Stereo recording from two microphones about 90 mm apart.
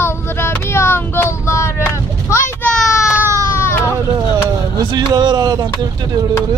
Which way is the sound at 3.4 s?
30° left (ahead or behind).